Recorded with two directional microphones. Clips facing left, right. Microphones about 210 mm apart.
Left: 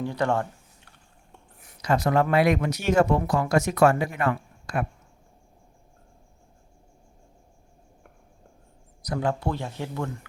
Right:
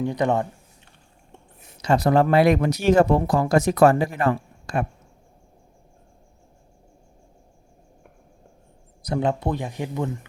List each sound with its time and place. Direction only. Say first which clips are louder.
0.0 s speech: right 3 dB; 20° right (ahead or behind)
9.0 s speech: right 3 dB; 20° right (ahead or behind)